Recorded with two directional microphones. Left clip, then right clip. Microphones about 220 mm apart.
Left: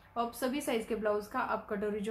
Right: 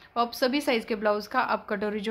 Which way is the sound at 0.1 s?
40° right (ahead or behind).